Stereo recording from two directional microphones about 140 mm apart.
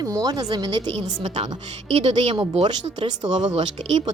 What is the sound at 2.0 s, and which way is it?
A woman's voice, 40° right (ahead or behind).